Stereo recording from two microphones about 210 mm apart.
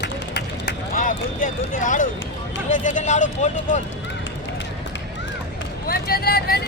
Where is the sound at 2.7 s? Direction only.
35° left (ahead or behind).